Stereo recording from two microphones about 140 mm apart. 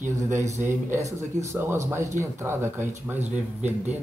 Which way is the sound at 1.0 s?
55° right (ahead or behind).